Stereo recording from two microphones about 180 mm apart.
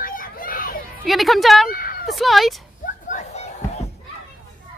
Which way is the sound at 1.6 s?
50° left (ahead or behind).